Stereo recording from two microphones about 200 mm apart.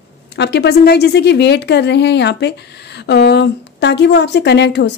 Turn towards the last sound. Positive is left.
turn(degrees=60)  # may be behind; listen again after turning